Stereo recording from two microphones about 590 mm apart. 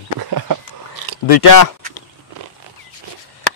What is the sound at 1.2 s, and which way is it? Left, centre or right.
Speech, left.